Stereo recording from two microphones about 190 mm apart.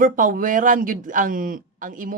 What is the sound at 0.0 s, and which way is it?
Speech, 45° right (ahead or behind).